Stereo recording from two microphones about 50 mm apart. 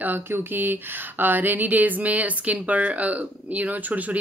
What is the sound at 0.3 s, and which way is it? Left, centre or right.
A woman's voice, right.